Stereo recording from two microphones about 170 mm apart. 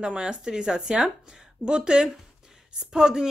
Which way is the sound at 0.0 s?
5° right (ahead or behind).